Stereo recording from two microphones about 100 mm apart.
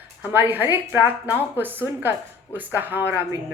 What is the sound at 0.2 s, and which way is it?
A woman's voice, 20° right (ahead or behind).